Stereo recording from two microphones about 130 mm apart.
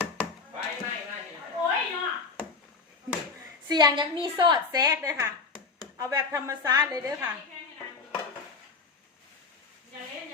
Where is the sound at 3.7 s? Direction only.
35° right (ahead or behind).